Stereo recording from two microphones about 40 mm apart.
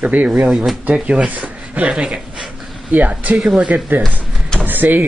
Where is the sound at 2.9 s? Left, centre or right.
Right.